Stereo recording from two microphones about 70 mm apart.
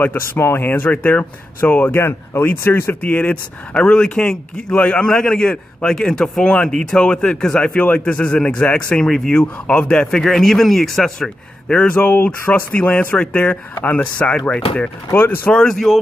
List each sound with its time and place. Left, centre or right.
0.0 s speech: left; by 5.5 s centre
5.5 s speech: centre
12.0 s speech: left
15.1 s speech: left
15.6 s speech: centre